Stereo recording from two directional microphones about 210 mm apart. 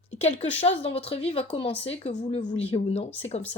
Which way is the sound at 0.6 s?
30° left (ahead or behind).